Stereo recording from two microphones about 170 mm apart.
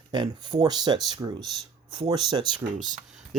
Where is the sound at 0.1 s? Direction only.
25° right (ahead or behind).